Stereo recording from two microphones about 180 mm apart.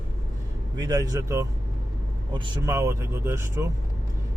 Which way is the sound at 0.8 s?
20° right (ahead or behind).